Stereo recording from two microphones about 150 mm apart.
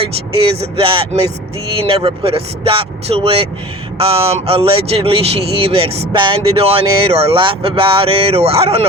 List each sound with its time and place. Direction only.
0.6 s speech: 35° right (ahead or behind)